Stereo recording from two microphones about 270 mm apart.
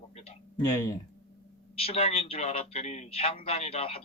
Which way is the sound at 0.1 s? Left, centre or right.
Left.